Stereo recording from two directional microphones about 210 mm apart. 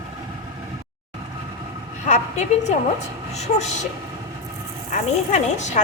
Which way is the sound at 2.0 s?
35° left (ahead or behind).